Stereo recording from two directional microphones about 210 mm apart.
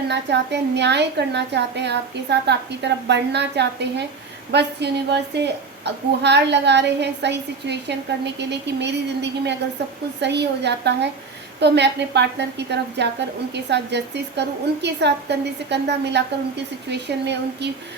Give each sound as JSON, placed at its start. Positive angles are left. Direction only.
{"t": 0.1, "sound": "a woman's voice", "side_deg": -55}